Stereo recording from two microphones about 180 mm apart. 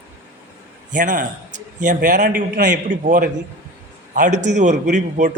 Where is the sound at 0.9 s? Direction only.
45° right (ahead or behind).